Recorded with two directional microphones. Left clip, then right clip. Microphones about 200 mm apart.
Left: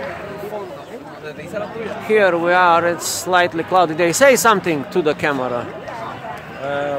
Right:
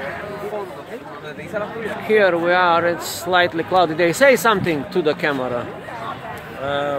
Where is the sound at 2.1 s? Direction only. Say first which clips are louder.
Left 1 dB; 10° left (ahead or behind).